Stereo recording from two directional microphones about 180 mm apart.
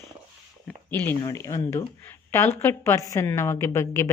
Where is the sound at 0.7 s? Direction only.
10° left (ahead or behind).